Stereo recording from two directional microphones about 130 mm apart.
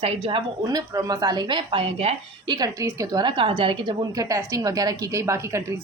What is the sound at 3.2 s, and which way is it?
A woman's voice, 40° right (ahead or behind).